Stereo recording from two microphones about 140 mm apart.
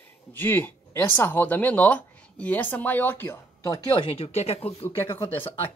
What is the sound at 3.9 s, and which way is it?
Speech, 40° left (ahead or behind).